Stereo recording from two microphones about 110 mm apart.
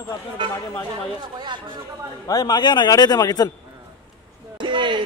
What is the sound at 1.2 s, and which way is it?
Speech, 40° right (ahead or behind).